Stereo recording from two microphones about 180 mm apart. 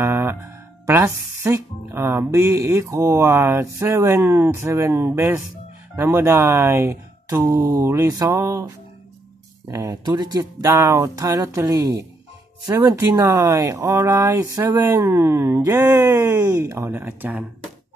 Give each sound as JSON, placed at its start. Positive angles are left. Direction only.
{"t": 0.0, "sound": "music", "side_deg": -15}
{"t": 0.8, "sound": "speech", "side_deg": -15}